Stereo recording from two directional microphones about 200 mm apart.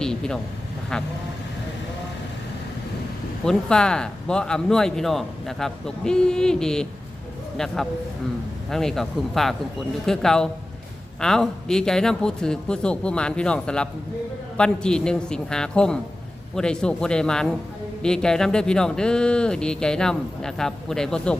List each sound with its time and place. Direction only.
0.0 s vehicle: 5° left (ahead or behind)
3.4 s a man's voice: 5° left (ahead or behind)